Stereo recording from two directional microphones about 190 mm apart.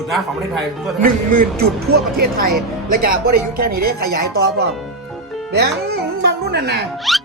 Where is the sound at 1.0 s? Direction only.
50° right (ahead or behind).